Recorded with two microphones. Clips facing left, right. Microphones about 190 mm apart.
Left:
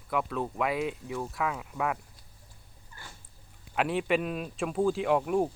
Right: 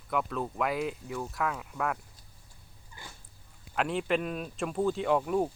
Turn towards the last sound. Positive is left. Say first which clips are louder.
# left 1 dB
turn(degrees=5)  # may be behind; listen again after turning